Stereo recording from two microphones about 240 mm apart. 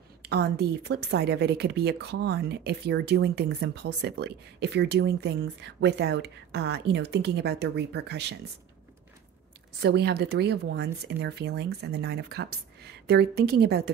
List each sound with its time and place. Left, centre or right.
0.3 s speech: right
9.8 s speech: right